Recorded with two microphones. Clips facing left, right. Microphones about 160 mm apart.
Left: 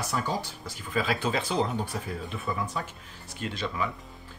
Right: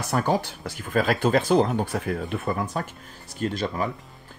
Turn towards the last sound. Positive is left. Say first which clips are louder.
# right 5 dB
turn(degrees=-45)  # may be behind; listen again after turning